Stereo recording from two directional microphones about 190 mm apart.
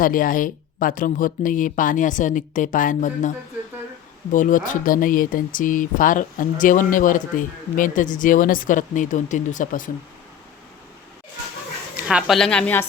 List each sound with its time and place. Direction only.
0.0 s speech: 45° left (ahead or behind)
12.0 s a woman's voice: centre (ahead or behind)